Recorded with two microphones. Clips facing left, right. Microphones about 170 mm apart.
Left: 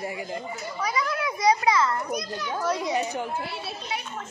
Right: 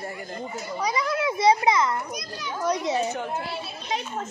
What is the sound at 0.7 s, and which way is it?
A child's voice, 20° right (ahead or behind).